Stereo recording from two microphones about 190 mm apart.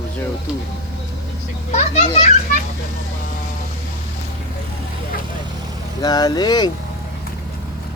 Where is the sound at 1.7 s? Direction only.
35° left (ahead or behind).